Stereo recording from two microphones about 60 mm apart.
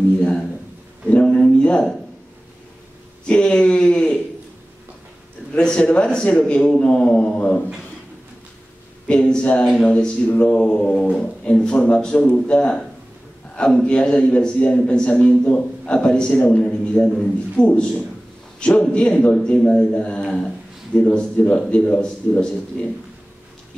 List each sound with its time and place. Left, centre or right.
0.2 s speech: centre
3.3 s speech: centre
5.5 s speech: centre
7.2 s mantra: left
9.0 s speech: centre
20.2 s a sound: centre
21.6 s speech: centre